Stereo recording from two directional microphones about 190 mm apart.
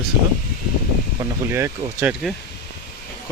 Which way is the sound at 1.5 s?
10° right (ahead or behind).